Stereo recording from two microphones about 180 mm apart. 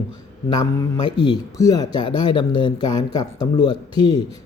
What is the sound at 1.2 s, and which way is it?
Speech, 20° left (ahead or behind).